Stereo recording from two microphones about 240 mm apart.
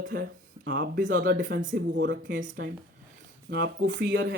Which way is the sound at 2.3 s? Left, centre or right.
Right.